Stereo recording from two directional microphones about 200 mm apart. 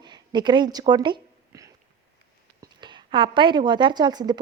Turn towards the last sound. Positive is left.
turn(degrees=-20)  # may be behind; listen again after turning